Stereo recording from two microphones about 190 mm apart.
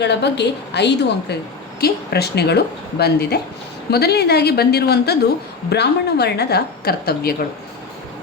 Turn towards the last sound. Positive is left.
turn(degrees=55)  # may be behind; listen again after turning